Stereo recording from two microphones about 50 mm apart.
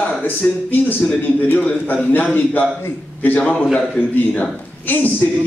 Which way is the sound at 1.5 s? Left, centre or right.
Left.